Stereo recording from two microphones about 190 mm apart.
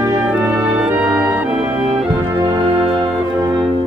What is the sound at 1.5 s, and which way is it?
Music, 30° right (ahead or behind).